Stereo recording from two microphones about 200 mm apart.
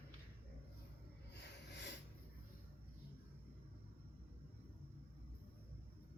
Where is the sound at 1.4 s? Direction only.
60° left (ahead or behind).